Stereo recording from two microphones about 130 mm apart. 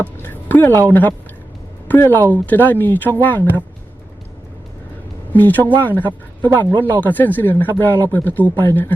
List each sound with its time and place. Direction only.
0.0 s a sound: 15° left (ahead or behind)
0.9 s speech: 15° left (ahead or behind)
5.3 s speech: 15° left (ahead or behind)